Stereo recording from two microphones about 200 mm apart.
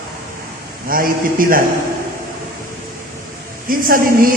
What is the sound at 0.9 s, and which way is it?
Speech, 45° right (ahead or behind).